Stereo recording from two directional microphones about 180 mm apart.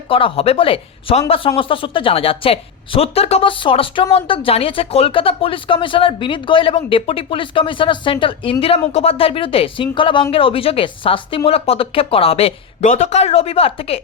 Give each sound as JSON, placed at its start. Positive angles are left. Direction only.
{"t": 0.1, "sound": "speech", "side_deg": 30}